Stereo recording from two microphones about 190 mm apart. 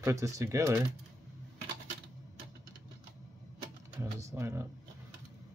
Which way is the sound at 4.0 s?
15° right (ahead or behind).